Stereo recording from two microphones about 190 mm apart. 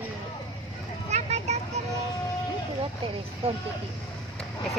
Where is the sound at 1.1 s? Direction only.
35° right (ahead or behind).